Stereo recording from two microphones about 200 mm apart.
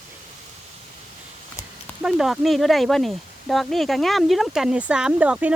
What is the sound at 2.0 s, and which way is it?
Speech, centre (ahead or behind).